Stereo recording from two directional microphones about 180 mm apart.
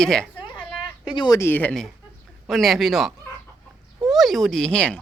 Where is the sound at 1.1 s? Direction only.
25° left (ahead or behind).